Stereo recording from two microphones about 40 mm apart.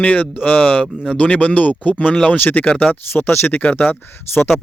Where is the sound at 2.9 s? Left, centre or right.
Left.